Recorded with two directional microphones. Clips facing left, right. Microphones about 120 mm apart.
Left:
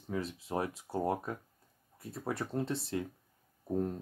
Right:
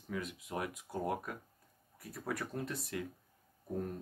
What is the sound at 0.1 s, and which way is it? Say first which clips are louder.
Speech: left 5 dB; 30° left (ahead or behind).